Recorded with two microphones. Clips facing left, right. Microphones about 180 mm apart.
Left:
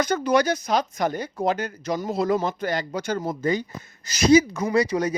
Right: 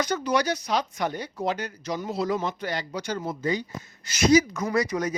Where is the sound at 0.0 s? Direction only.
50° left (ahead or behind).